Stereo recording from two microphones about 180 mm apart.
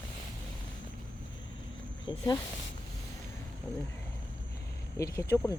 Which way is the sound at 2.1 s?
25° left (ahead or behind).